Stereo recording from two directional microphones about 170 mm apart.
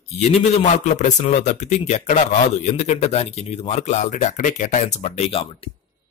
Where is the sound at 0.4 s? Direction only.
45° left (ahead or behind).